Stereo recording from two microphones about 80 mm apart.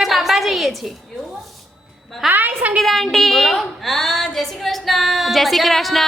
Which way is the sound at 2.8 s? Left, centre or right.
Centre.